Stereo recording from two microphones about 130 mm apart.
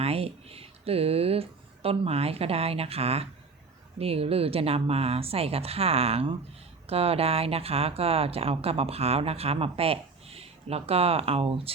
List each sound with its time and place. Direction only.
0.0 s speech: 50° right (ahead or behind)